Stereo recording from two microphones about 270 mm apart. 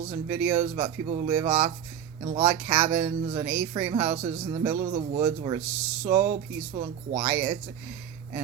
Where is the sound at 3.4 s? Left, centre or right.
Centre.